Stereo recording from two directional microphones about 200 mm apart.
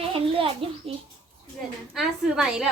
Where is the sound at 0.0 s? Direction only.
30° right (ahead or behind).